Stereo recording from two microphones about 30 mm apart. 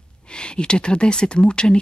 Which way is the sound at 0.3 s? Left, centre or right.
Left.